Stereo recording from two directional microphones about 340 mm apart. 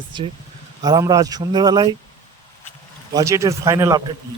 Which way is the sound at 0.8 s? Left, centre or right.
Centre.